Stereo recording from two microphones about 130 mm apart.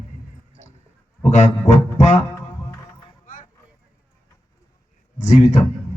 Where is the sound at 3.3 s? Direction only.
90° left.